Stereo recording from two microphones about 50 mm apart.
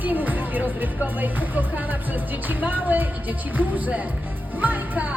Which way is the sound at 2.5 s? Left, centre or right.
Right.